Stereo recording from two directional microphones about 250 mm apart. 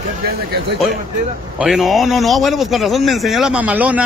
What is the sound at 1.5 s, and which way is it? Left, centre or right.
Speech, centre.